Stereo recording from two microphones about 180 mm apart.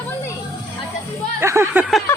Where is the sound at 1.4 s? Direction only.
15° right (ahead or behind).